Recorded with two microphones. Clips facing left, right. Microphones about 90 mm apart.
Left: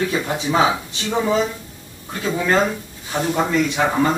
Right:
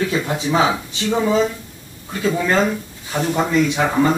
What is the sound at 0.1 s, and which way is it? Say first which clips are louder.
Speech: right 1 dB; 10° left (ahead or behind).